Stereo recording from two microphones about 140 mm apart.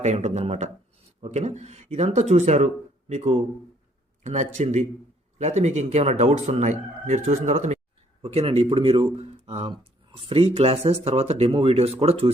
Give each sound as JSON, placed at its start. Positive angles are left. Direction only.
{"t": 0.0, "sound": "speech", "side_deg": -50}
{"t": 8.2, "sound": "speech", "side_deg": -45}